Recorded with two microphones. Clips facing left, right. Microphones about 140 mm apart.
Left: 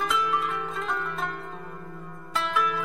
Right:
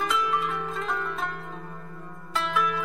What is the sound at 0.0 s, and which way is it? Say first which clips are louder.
Zither: even; centre (ahead or behind).